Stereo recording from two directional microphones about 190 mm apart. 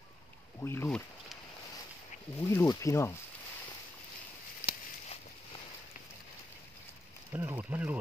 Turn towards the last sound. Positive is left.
turn(degrees=-10)  # may be behind; listen again after turning